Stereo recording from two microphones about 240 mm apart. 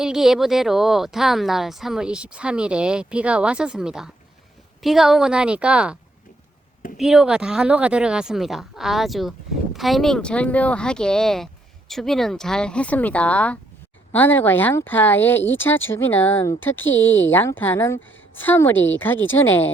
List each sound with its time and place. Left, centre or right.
0.0 s a woman's voice: centre
16.8 s speech: left
17.3 s a woman's voice: centre